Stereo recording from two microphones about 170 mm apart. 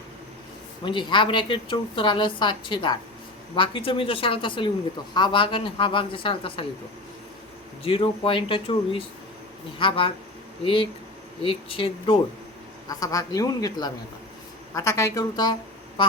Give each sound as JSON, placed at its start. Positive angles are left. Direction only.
{"t": 0.9, "sound": "a woman's voice", "side_deg": 30}
{"t": 7.9, "sound": "speech", "side_deg": 30}
{"t": 12.9, "sound": "a woman's voice", "side_deg": 20}